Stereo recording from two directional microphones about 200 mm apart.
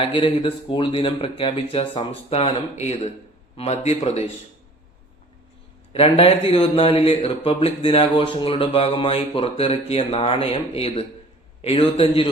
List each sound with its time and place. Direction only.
0.0 s a man's voice: 25° left (ahead or behind)
5.9 s speech: 30° left (ahead or behind)